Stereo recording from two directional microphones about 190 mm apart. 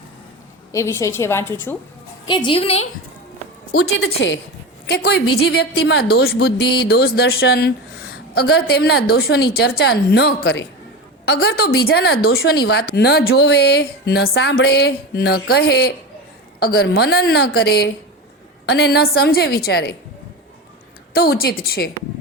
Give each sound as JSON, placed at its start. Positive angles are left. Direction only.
{"t": 0.7, "sound": "a woman's voice", "side_deg": 15}
{"t": 2.2, "sound": "a woman's voice", "side_deg": 25}
{"t": 3.8, "sound": "a woman's voice", "side_deg": 90}
{"t": 4.9, "sound": "a woman's voice", "side_deg": 60}
{"t": 21.1, "sound": "a woman's voice", "side_deg": 55}